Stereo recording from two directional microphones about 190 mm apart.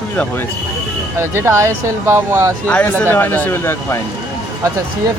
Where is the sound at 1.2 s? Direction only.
15° right (ahead or behind).